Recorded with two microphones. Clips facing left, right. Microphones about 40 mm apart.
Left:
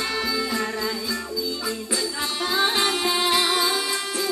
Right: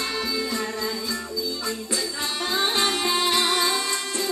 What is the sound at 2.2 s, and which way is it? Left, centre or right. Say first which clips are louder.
Music: left 3 dB; centre.